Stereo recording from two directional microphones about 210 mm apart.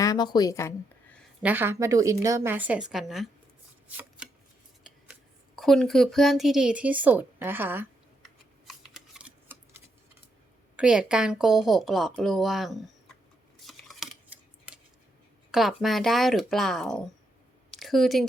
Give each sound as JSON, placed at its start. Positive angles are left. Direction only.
{"t": 0.0, "sound": "a woman's voice", "side_deg": 20}
{"t": 1.4, "sound": "a woman's voice", "side_deg": -10}
{"t": 3.8, "sound": "shuffling cards", "side_deg": -5}
{"t": 5.5, "sound": "speech", "side_deg": 0}
{"t": 8.6, "sound": "a sound", "side_deg": -5}
{"t": 10.8, "sound": "speech", "side_deg": -5}
{"t": 13.7, "sound": "a sound", "side_deg": 0}
{"t": 15.5, "sound": "speech", "side_deg": 0}
{"t": 17.7, "sound": "a sound", "side_deg": 0}